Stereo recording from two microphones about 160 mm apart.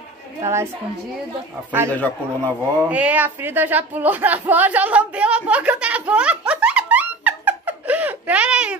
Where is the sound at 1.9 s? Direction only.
10° left (ahead or behind).